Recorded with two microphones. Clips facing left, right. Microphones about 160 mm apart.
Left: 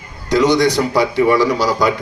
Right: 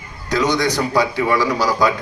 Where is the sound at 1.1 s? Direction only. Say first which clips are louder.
Left 5 dB; 20° left (ahead or behind).